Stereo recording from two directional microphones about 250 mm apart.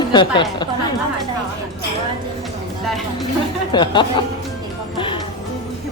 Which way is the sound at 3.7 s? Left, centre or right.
Centre.